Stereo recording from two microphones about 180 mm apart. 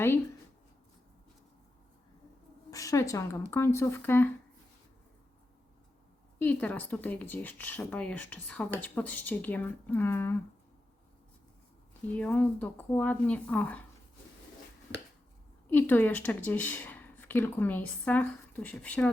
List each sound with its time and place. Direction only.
2.6 s a woman's voice: 20° left (ahead or behind)
6.4 s speech: 10° left (ahead or behind)
12.1 s speech: 5° left (ahead or behind)
15.7 s speech: 10° left (ahead or behind)